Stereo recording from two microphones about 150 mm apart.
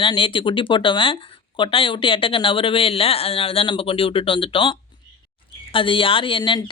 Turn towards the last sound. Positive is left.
turn(degrees=35)  # may be behind; listen again after turning